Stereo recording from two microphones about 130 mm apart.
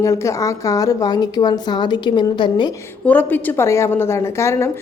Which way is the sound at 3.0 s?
15° left (ahead or behind).